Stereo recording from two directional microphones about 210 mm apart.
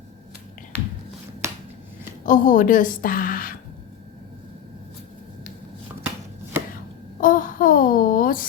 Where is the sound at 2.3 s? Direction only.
40° left (ahead or behind).